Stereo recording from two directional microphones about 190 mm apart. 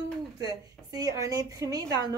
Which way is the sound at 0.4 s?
20° right (ahead or behind).